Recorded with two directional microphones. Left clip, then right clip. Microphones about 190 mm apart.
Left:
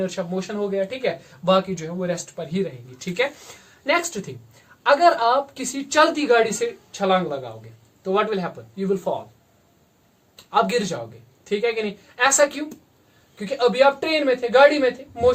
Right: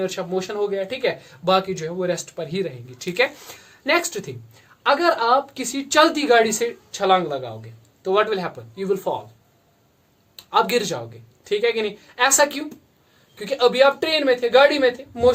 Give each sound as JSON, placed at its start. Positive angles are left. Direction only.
{"t": 0.0, "sound": "speech", "side_deg": -40}
{"t": 10.3, "sound": "speech", "side_deg": -40}